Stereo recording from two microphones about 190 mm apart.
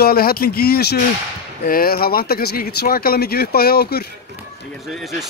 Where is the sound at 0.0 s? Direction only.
50° left (ahead or behind).